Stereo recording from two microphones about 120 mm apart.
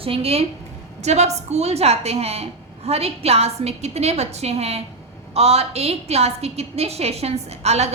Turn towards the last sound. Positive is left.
turn(degrees=-65)  # may be behind; listen again after turning